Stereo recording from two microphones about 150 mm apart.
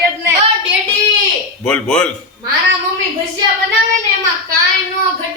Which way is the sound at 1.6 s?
5° left (ahead or behind).